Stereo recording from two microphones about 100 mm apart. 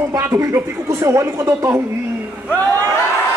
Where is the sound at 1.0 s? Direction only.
35° right (ahead or behind).